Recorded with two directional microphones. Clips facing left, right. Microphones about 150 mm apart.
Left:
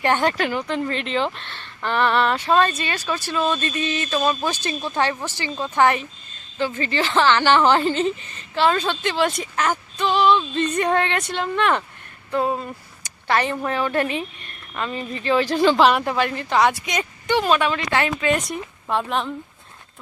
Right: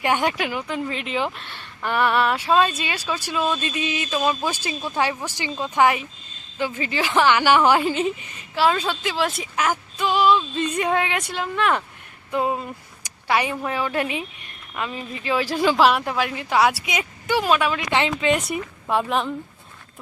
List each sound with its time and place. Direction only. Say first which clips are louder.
0.0 s a woman's voice: left 2 dB; 10° right (ahead or behind)
12.3 s a woman's voice: left 1 dB; 15° right (ahead or behind)
17.9 s speech: right 1 dB; 20° right (ahead or behind)
18.3 s a woman's voice: right 1 dB; 5° right (ahead or behind)